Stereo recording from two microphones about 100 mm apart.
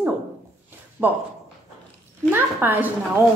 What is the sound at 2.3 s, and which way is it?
Speech, 20° right (ahead or behind).